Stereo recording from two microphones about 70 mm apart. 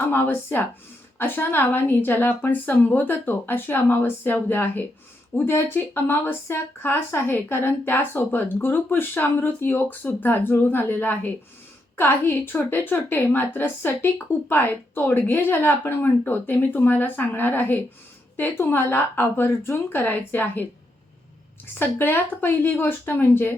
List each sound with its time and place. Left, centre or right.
0.0 s a woman's voice: left
21.8 s speech: left